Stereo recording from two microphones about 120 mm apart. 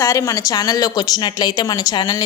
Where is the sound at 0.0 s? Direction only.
25° left (ahead or behind).